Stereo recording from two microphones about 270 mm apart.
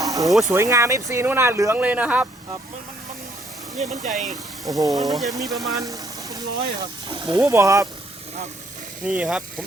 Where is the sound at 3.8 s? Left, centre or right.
Right.